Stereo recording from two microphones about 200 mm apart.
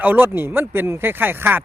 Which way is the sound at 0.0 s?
10° right (ahead or behind).